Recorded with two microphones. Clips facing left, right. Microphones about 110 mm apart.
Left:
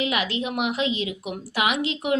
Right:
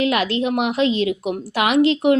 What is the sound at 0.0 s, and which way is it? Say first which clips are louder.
A woman's voice: right 6 dB; 50° right (ahead or behind).